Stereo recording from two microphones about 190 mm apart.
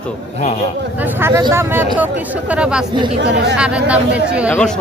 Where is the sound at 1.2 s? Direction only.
10° right (ahead or behind).